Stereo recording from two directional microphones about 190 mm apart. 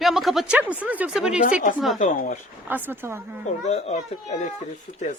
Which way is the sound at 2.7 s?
10° right (ahead or behind).